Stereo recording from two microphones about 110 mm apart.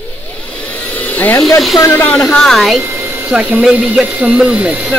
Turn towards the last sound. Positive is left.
turn(degrees=-15)  # may be behind; listen again after turning